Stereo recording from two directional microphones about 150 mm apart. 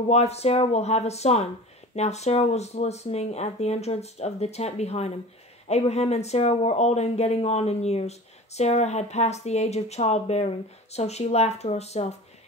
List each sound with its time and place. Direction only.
0.1 s speech: 45° left (ahead or behind)